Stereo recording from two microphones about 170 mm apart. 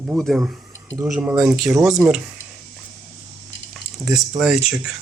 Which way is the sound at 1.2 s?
5° right (ahead or behind).